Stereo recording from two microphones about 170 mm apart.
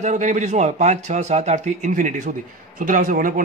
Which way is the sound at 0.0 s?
45° right (ahead or behind).